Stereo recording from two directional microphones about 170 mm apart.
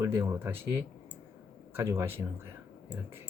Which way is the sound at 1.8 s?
15° right (ahead or behind).